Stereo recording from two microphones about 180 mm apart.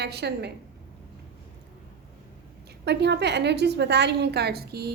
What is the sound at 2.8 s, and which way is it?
A woman's voice, 70° right (ahead or behind).